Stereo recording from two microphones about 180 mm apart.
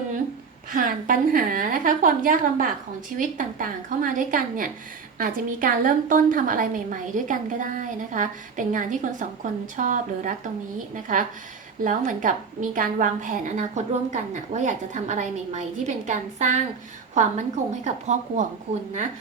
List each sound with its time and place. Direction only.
0.7 s a woman's voice: 50° right (ahead or behind)
17.8 s a woman's voice: 40° right (ahead or behind)